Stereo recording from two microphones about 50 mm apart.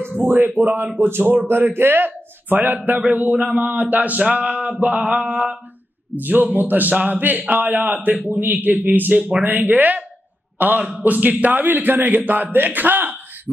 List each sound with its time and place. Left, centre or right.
0.2 s a man's voice: right
10.8 s a man's voice: right